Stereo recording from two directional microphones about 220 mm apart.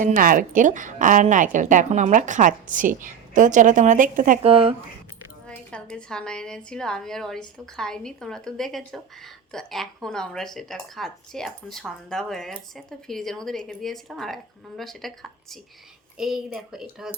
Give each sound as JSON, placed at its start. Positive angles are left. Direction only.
{"t": 0.0, "sound": "a woman's voice", "side_deg": -35}
{"t": 5.5, "sound": "a woman's voice", "side_deg": 5}